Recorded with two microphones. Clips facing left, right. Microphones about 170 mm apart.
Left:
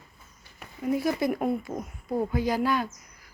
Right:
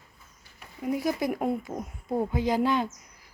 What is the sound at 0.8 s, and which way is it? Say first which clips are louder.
Speech: left 2 dB; 15° right (ahead or behind).